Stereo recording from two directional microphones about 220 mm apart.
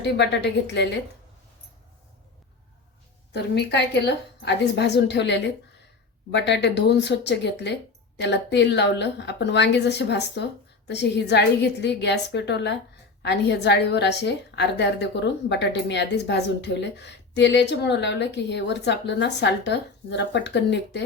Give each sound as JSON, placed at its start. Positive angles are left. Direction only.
{"t": 0.0, "sound": "a woman's voice", "side_deg": 50}
{"t": 3.3, "sound": "a woman's voice", "side_deg": 50}